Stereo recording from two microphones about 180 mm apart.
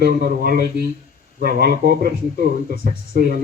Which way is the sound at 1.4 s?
55° right (ahead or behind).